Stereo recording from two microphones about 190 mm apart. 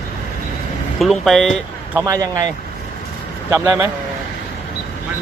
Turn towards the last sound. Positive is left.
turn(degrees=-15)  # may be behind; listen again after turning